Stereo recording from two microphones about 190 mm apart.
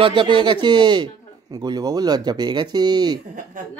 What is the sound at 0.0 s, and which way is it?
A man's voice, 25° right (ahead or behind).